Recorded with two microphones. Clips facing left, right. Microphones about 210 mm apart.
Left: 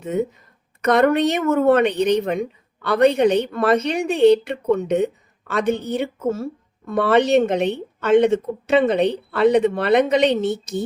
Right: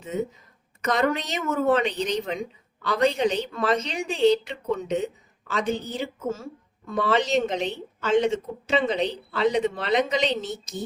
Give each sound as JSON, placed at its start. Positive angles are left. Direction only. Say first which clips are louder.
{"t": 0.0, "sound": "a woman's voice", "louder": "left 6 dB", "side_deg": 60}